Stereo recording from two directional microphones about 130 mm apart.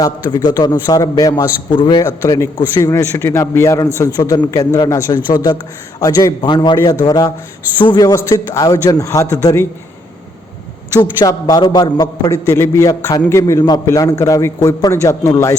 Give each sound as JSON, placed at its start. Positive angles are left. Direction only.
{"t": 0.0, "sound": "a man's voice", "side_deg": 30}
{"t": 2.0, "sound": "a man's voice", "side_deg": 25}
{"t": 10.9, "sound": "a man's voice", "side_deg": 30}